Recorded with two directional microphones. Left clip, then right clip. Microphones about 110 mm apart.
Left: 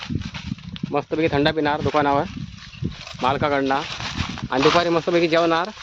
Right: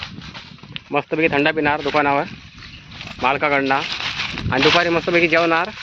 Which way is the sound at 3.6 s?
15° right (ahead or behind).